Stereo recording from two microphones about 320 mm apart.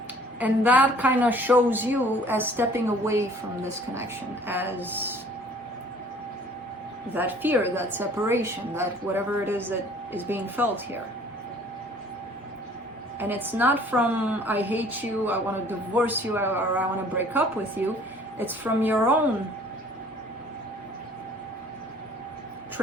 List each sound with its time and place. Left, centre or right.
0.3 s a woman's voice: centre
7.1 s a woman's voice: centre
13.1 s a woman's voice: centre